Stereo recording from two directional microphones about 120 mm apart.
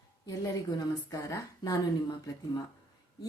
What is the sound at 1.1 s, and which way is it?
A woman's voice, 30° left (ahead or behind).